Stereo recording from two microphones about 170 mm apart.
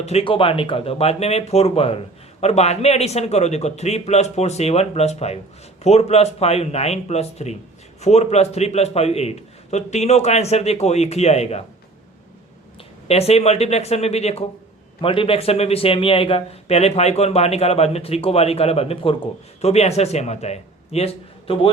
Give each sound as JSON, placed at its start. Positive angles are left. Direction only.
{"t": 0.0, "sound": "a man's voice", "side_deg": 35}
{"t": 13.1, "sound": "a man's voice", "side_deg": 35}